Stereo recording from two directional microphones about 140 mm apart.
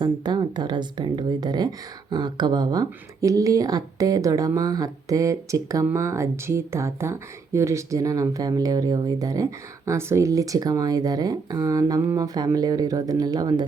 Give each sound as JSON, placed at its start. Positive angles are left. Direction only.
{"t": 0.0, "sound": "speech", "side_deg": -30}